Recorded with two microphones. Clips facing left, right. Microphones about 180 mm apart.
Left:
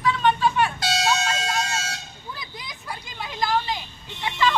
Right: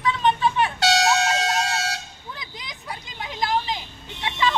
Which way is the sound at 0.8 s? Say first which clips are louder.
Right 4 dB; 75° right (ahead or behind).